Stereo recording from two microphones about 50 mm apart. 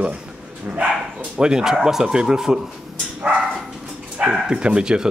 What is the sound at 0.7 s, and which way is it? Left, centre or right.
Speech, right.